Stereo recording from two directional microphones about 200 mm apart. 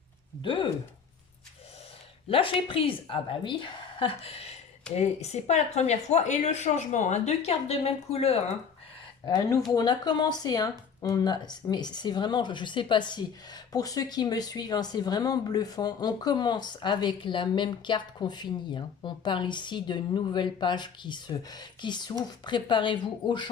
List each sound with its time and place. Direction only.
0.4 s speech: 25° left (ahead or behind)
2.3 s speech: 25° left (ahead or behind)
9.2 s speech: 20° left (ahead or behind)